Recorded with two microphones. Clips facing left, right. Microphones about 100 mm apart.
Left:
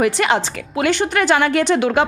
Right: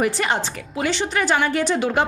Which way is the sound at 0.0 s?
85° left.